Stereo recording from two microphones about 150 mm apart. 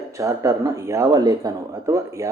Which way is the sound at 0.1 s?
20° right (ahead or behind).